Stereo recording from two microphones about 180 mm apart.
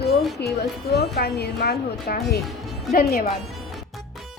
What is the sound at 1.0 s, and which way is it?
A woman's voice, 65° left (ahead or behind).